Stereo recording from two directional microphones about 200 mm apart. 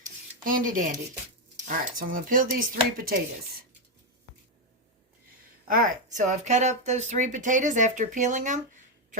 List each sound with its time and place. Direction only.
0.4 s speech: 45° right (ahead or behind)
5.6 s speech: 45° right (ahead or behind)